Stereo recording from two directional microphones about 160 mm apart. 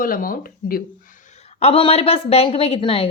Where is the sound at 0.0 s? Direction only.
60° left (ahead or behind).